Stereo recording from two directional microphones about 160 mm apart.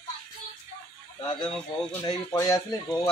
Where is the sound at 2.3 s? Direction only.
20° left (ahead or behind).